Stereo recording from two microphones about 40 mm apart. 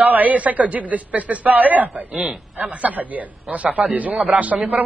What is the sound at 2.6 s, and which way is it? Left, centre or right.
A woman's voice, right.